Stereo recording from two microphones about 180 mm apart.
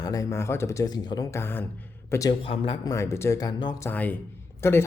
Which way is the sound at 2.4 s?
30° left (ahead or behind).